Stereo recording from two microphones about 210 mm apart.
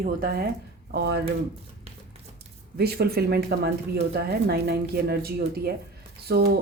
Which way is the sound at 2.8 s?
50° right (ahead or behind).